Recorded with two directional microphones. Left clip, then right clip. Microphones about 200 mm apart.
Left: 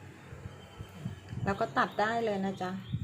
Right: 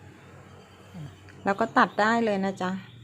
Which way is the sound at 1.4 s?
30° right (ahead or behind).